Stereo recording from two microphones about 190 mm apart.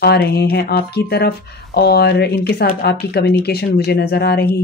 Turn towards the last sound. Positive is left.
turn(degrees=55)  # may be behind; listen again after turning